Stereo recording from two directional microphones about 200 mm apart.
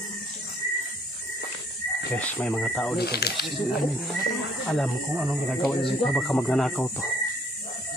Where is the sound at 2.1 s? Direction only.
5° left (ahead or behind).